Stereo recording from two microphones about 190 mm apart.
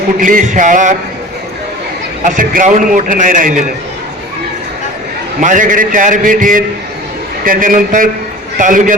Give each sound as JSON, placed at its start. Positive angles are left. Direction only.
{"t": 0.2, "sound": "a man's voice", "side_deg": -45}
{"t": 2.2, "sound": "a man's voice", "side_deg": -45}
{"t": 5.4, "sound": "a man's voice", "side_deg": -45}